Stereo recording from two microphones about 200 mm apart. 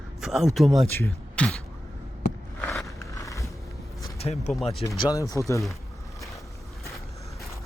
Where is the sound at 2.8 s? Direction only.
15° left (ahead or behind).